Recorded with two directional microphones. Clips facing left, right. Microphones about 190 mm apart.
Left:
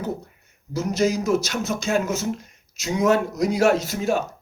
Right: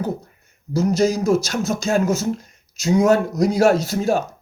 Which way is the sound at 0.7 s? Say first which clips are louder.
Right 4 dB; 40° right (ahead or behind).